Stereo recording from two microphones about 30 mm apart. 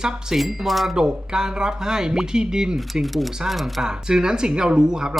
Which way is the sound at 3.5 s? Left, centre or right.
Centre.